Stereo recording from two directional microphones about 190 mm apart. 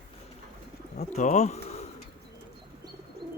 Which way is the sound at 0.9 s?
40° left (ahead or behind).